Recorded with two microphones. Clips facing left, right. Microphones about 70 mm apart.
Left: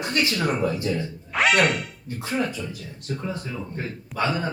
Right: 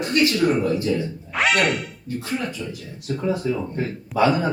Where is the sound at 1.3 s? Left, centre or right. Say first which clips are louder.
Even; centre.